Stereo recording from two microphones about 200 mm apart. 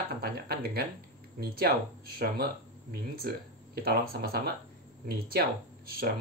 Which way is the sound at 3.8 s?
50° right (ahead or behind).